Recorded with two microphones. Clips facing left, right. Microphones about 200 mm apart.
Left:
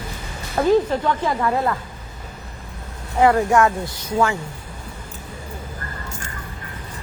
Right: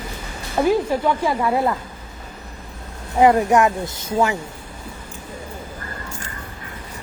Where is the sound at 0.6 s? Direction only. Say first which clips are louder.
Left 1 dB; 10° right (ahead or behind).